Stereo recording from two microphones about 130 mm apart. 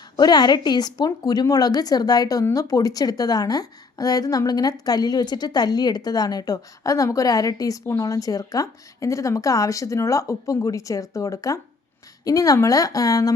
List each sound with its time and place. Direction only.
0.2 s a woman's voice: 35° left (ahead or behind)